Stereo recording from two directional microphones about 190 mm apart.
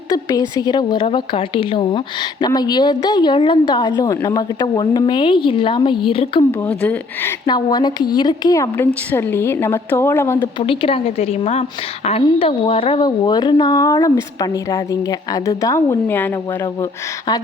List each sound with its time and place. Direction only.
0.1 s speech: 20° left (ahead or behind)
6.5 s a woman's voice: 10° left (ahead or behind)
7.4 s a woman's voice: 20° left (ahead or behind)
10.6 s a woman's voice: 30° left (ahead or behind)